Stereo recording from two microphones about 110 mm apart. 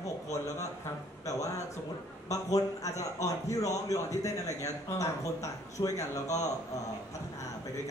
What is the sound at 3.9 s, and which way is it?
A man's voice, 30° left (ahead or behind).